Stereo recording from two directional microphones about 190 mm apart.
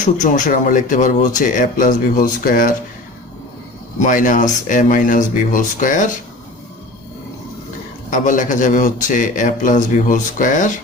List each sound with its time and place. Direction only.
0.0 s speech: 40° left (ahead or behind)
4.0 s speech: 45° left (ahead or behind)
8.1 s speech: 40° left (ahead or behind)